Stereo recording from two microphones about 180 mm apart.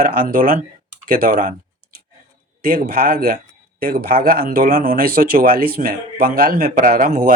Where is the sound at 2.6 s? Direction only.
55° right (ahead or behind).